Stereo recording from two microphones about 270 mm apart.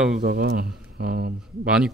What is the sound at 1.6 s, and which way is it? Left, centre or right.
Speech, centre.